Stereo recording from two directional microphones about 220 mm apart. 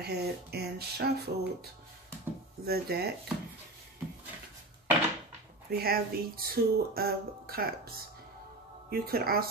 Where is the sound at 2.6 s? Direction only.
45° right (ahead or behind).